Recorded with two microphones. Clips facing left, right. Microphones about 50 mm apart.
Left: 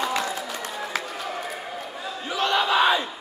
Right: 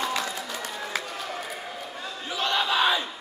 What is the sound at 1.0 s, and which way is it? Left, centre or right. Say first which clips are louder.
Basketball bounce: left 3 dB; centre.